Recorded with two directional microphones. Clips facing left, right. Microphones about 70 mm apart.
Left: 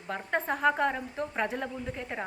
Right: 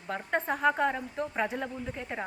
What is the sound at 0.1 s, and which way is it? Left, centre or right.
Speech, centre.